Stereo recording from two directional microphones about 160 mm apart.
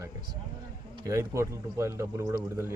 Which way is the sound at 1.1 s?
20° right (ahead or behind).